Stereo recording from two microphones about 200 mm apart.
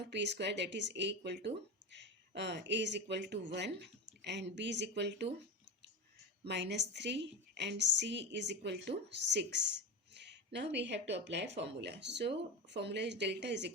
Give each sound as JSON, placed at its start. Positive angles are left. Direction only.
{"t": 0.0, "sound": "speech", "side_deg": -60}
{"t": 6.4, "sound": "speech", "side_deg": -60}